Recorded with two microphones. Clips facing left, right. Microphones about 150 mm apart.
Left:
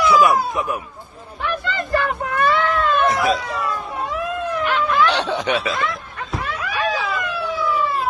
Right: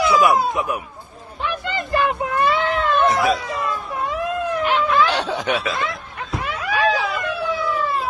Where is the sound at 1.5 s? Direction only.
20° right (ahead or behind).